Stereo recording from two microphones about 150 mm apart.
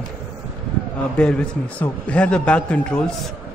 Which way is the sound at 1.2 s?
5° left (ahead or behind).